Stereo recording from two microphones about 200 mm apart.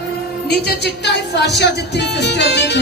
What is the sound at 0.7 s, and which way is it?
Speech, 55° left (ahead or behind).